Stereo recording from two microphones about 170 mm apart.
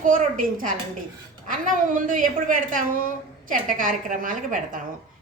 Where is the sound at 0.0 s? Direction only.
50° right (ahead or behind).